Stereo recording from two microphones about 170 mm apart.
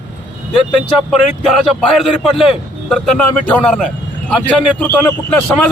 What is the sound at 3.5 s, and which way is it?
A man's voice, 5° left (ahead or behind).